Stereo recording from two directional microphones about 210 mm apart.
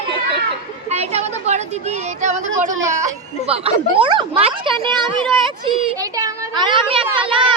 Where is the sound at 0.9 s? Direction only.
30° right (ahead or behind).